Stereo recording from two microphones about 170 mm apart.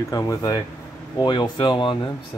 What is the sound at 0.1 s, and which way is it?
Speech, 20° left (ahead or behind).